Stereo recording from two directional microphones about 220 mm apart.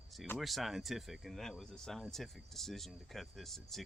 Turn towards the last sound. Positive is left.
turn(degrees=0)  # may be behind; listen again after turning